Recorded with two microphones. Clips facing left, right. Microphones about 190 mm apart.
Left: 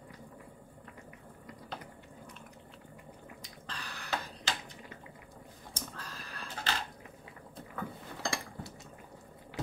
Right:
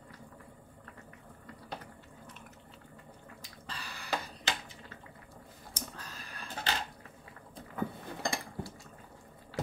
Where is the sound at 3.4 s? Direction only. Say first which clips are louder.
Right 2 dB; 10° right (ahead or behind).